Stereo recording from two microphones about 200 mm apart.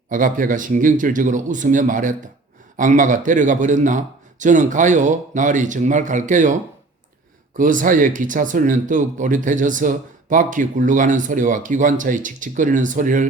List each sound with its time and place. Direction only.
0.1 s speech: 40° right (ahead or behind)